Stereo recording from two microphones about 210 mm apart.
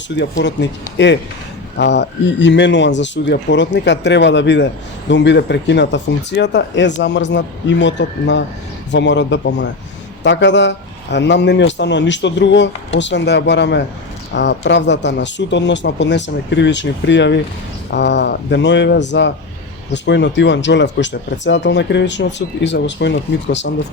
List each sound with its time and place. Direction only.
0.2 s speech: 55° left (ahead or behind)